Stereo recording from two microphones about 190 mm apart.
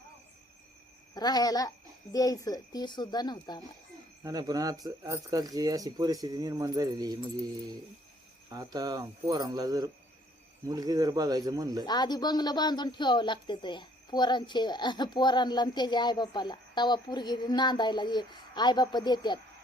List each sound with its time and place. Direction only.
1.1 s a woman's voice: 20° left (ahead or behind)
4.2 s speech: 20° right (ahead or behind)
8.4 s speech: 20° right (ahead or behind)
11.9 s a woman's voice: 20° left (ahead or behind)